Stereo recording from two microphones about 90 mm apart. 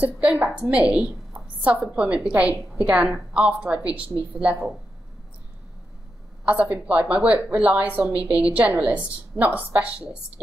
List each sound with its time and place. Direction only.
0.0 s a woman's voice: 20° right (ahead or behind)
6.4 s a woman's voice: 15° right (ahead or behind)